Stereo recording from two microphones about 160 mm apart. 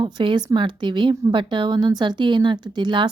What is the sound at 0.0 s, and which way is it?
Speech, 30° right (ahead or behind).